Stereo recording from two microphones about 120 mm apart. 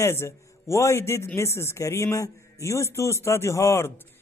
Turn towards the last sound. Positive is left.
turn(degrees=20)  # may be behind; listen again after turning